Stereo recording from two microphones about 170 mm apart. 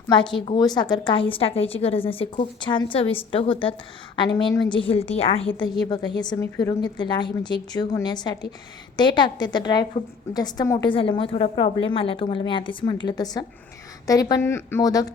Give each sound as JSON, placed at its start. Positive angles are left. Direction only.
{"t": 0.1, "sound": "a woman's voice", "side_deg": 30}